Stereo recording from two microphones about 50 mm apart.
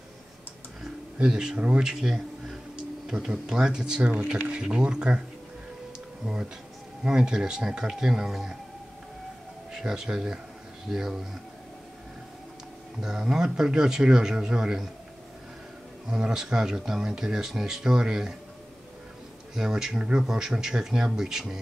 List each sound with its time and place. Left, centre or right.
1.1 s speech: centre
6.2 s speech: centre
9.7 s speech: centre
13.0 s speech: centre
16.1 s speech: centre
19.5 s speech: centre